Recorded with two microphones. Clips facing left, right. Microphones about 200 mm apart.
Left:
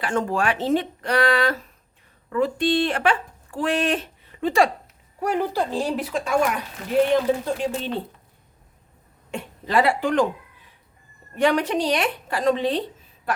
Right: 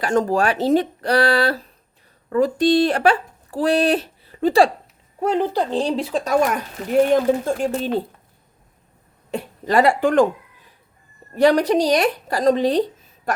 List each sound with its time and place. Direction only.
0.0 s speech: 40° right (ahead or behind)
5.2 s speech: 20° right (ahead or behind); by 7.9 s 45° right (ahead or behind)
9.3 s speech: 40° right (ahead or behind)
11.3 s speech: 40° right (ahead or behind)
13.3 s a sound: 45° right (ahead or behind)